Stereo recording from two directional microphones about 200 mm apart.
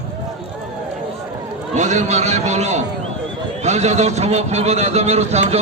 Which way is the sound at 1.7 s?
35° right (ahead or behind).